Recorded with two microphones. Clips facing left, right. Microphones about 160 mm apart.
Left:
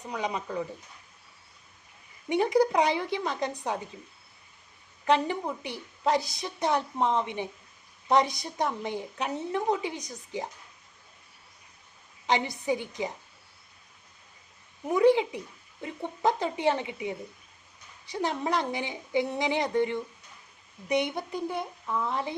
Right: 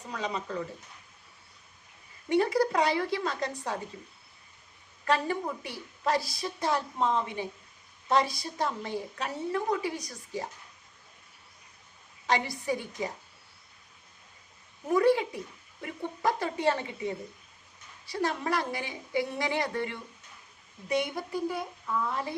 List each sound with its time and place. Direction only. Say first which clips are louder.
0.1 s speech: left 2 dB; 15° left (ahead or behind)
2.3 s a woman's voice: left 2 dB; 20° left (ahead or behind)
5.0 s a woman's voice: left 3 dB; 20° left (ahead or behind)
12.2 s a woman's voice: left 2 dB; 20° left (ahead or behind)
14.8 s a woman's voice: left 2 dB; 20° left (ahead or behind)